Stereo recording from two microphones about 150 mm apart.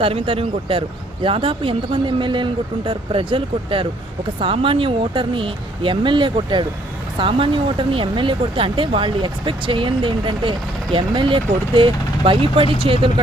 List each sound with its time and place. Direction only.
0.0 s speech: 35° right (ahead or behind)